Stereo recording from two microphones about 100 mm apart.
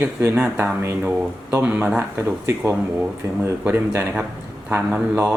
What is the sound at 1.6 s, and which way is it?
Speech, 15° right (ahead or behind).